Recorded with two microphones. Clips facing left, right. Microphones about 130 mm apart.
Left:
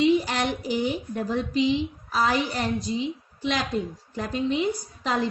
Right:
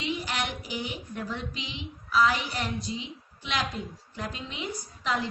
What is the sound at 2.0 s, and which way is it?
Speech, 40° left (ahead or behind).